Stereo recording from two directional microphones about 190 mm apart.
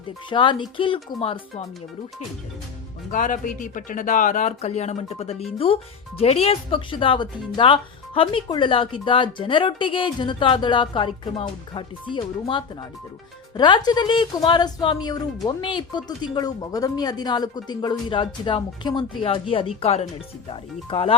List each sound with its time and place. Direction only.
0.3 s speech: 25° left (ahead or behind)
3.1 s speech: 45° left (ahead or behind)